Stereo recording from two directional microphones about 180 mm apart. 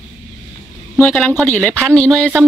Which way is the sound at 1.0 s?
10° left (ahead or behind).